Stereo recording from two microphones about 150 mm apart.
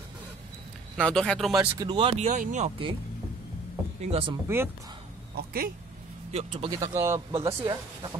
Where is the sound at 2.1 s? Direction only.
55° right (ahead or behind).